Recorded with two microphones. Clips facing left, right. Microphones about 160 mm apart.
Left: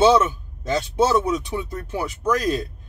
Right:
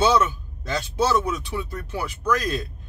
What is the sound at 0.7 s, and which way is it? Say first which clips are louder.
Speech: left 3 dB; 20° left (ahead or behind).